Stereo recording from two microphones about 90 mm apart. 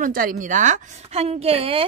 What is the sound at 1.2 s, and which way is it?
Speech, 90° right.